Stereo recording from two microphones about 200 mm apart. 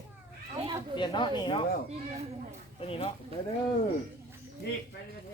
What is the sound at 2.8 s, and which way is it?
Speech, 30° left (ahead or behind).